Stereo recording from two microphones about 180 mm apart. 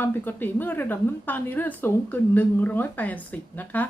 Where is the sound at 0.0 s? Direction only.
10° left (ahead or behind).